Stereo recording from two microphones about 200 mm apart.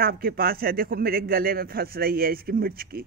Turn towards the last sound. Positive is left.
turn(degrees=-50)  # may be behind; listen again after turning